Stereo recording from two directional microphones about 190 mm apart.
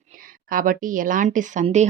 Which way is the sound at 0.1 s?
45° right (ahead or behind).